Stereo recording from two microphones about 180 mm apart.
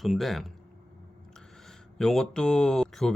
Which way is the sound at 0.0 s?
Centre (ahead or behind).